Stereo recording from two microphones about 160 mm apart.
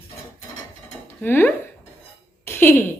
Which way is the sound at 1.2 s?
10° left (ahead or behind).